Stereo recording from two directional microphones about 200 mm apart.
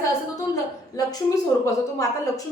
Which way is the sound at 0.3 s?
20° left (ahead or behind).